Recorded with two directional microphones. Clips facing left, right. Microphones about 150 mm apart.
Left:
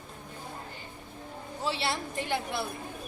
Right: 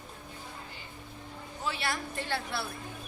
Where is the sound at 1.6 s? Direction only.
25° left (ahead or behind).